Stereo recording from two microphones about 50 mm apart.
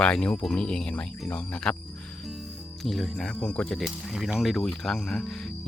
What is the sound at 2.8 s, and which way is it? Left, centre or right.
Speech, centre.